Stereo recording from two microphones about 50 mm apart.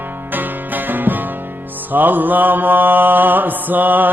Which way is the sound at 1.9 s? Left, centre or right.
Right.